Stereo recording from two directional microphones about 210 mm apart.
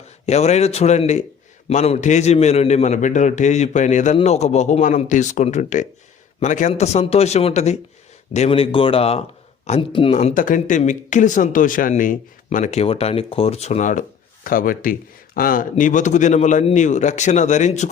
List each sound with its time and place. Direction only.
0.3 s speech: 30° left (ahead or behind)